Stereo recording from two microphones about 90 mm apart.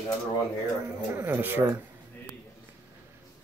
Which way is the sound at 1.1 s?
25° right (ahead or behind).